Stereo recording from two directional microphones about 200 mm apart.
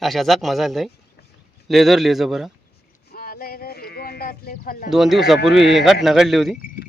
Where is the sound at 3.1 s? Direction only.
45° left (ahead or behind).